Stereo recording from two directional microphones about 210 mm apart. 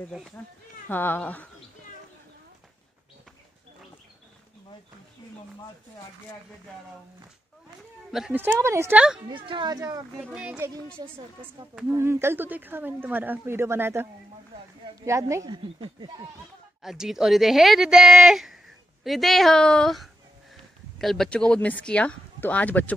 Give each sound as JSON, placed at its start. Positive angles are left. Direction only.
{"t": 0.8, "sound": "speech", "side_deg": 10}
{"t": 8.1, "sound": "speech", "side_deg": -5}
{"t": 9.3, "sound": "speech", "side_deg": -20}
{"t": 10.2, "sound": "speech", "side_deg": -5}
{"t": 11.0, "sound": "speech", "side_deg": -20}
{"t": 15.0, "sound": "speech", "side_deg": -15}
{"t": 16.8, "sound": "speech", "side_deg": 0}